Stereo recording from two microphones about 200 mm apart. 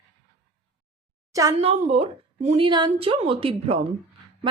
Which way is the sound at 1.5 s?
35° right (ahead or behind).